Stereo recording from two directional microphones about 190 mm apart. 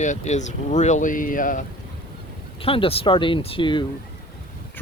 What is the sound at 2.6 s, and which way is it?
Speech, 30° left (ahead or behind).